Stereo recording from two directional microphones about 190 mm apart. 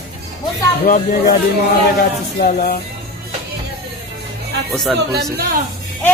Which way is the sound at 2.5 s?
45° left (ahead or behind).